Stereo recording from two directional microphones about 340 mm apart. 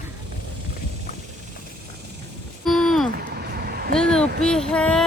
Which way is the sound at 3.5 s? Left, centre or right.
Right.